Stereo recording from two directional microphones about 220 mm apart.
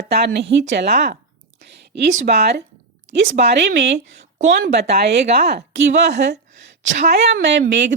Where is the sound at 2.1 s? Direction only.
45° right (ahead or behind).